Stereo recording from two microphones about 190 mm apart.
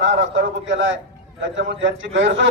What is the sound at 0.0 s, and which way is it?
A man's voice, 75° right (ahead or behind).